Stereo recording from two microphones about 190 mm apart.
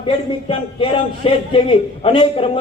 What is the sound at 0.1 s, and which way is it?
A man's voice, 25° left (ahead or behind).